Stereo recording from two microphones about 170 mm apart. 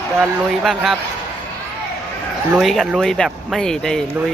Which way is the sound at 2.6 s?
Centre (ahead or behind).